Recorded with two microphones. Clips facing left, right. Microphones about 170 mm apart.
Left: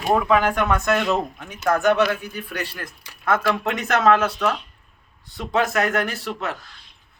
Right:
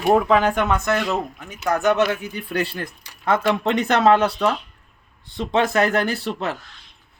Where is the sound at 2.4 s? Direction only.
25° right (ahead or behind).